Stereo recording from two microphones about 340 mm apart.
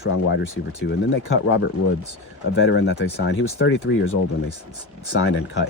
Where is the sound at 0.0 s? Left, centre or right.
Left.